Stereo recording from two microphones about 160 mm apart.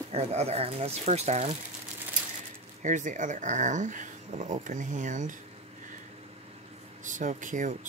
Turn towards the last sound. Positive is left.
turn(degrees=-50)  # may be behind; listen again after turning